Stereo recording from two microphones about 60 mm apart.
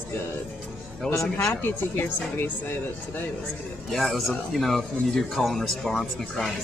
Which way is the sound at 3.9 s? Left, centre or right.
Centre.